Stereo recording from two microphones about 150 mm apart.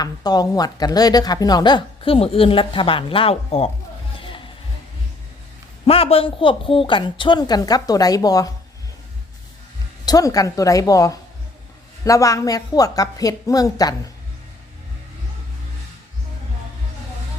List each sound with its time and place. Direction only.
0.0 s a woman's voice: 25° left (ahead or behind)
4.2 s music: 35° left (ahead or behind)
5.8 s a woman's voice: 40° left (ahead or behind); by 8.5 s 25° left (ahead or behind)
10.1 s a woman's voice: 25° left (ahead or behind)